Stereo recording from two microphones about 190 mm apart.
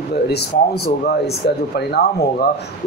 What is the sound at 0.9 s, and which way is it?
Speech, 55° left (ahead or behind).